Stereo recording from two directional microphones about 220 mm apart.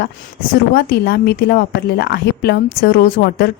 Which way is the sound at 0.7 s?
45° left (ahead or behind).